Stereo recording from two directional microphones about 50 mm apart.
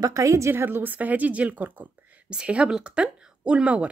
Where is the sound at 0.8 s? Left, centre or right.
Right.